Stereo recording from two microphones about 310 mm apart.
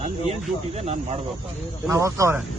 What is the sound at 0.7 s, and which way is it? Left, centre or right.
Speech, right.